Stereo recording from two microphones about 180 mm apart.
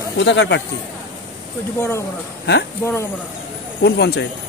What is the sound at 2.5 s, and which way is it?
Speech, 60° left (ahead or behind).